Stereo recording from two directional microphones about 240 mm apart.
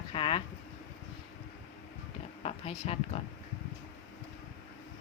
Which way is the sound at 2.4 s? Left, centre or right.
Left.